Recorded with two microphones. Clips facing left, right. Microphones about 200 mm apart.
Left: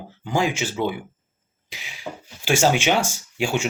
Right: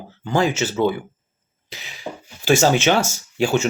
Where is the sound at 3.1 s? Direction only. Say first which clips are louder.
Right 5 dB; 40° right (ahead or behind).